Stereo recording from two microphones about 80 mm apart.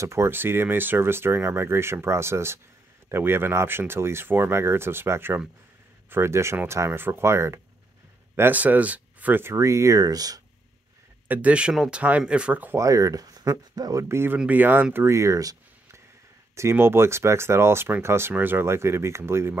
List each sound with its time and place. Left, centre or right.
0.0 s speech: right
8.4 s speech: right
11.2 s speech: centre
12.7 s speech: right
14.0 s speech: right
15.1 s a sound: right
16.5 s speech: right